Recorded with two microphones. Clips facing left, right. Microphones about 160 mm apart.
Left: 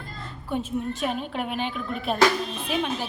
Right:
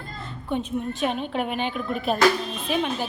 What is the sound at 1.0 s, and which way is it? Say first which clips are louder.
A woman's voice: right 3 dB; centre (ahead or behind).